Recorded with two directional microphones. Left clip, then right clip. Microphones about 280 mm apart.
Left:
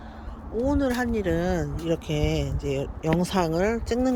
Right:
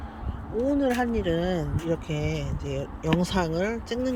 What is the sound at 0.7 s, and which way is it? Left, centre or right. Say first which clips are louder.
Speech: right 1 dB; centre.